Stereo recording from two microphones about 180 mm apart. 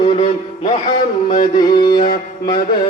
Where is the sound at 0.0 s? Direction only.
35° left (ahead or behind).